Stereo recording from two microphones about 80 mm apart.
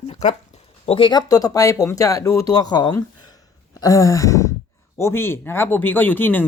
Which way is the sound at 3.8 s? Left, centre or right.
Left.